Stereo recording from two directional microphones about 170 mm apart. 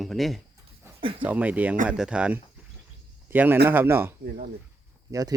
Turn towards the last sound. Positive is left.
turn(degrees=-20)  # may be behind; listen again after turning